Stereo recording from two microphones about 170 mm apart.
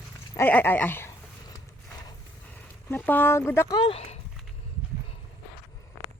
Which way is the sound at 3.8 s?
35° left (ahead or behind).